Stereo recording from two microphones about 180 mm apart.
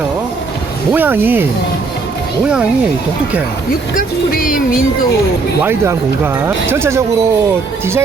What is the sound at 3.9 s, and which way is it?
Speech, 50° left (ahead or behind).